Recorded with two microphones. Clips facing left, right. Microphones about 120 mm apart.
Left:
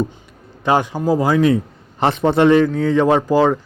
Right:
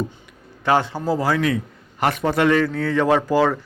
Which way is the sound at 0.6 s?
15° left (ahead or behind).